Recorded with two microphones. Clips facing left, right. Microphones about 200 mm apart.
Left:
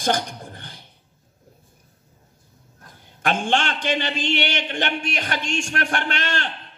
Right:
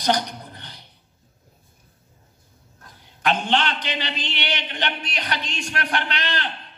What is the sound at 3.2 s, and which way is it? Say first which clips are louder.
A man's voice: even; 50° left (ahead or behind).